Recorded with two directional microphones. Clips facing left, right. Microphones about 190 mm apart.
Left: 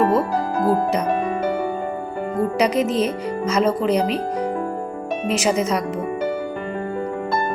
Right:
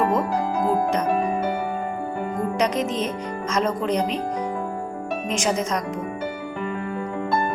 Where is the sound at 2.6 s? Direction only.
10° left (ahead or behind).